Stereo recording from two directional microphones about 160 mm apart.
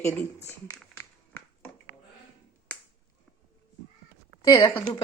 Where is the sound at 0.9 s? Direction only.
15° left (ahead or behind).